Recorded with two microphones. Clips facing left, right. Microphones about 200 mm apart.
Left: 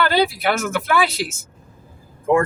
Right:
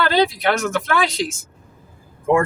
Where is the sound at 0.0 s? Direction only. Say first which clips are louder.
Right 1 dB; 5° left (ahead or behind).